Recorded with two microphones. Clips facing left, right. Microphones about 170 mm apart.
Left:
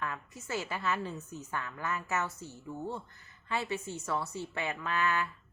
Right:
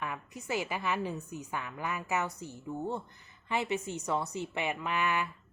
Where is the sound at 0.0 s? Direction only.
15° right (ahead or behind).